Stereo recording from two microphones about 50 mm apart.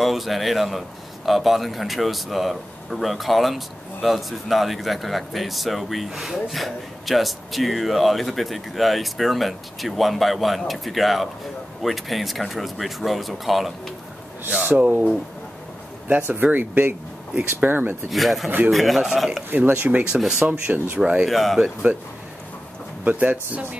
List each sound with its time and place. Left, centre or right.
0.0 s a man's voice: centre
14.8 s speech: right
16.1 s speech: right
18.1 s a man's voice: centre
19.5 s speech: right
21.3 s a man's voice: centre
23.0 s speech: right